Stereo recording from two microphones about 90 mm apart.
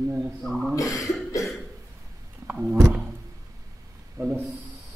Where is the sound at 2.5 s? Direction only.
15° right (ahead or behind).